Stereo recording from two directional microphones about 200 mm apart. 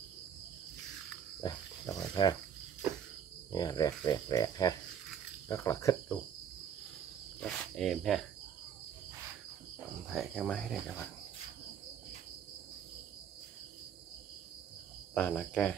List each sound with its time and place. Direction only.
1.4 s cricket: 20° left (ahead or behind)
3.5 s cricket: 20° left (ahead or behind)
5.5 s speech: 15° left (ahead or behind)
7.3 s speech: 5° left (ahead or behind)
10.1 s speech: 5° left (ahead or behind)
15.1 s speech: 5° left (ahead or behind)